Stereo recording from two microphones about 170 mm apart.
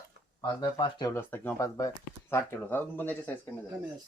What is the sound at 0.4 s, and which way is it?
Speech, 25° left (ahead or behind).